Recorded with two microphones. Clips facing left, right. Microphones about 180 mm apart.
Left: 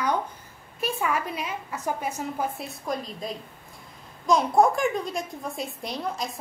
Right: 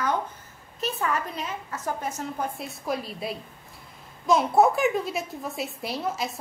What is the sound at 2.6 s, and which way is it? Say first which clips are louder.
Speech: right 1 dB; 5° right (ahead or behind).